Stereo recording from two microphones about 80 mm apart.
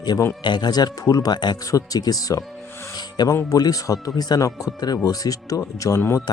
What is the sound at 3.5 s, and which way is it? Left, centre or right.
Speech, left.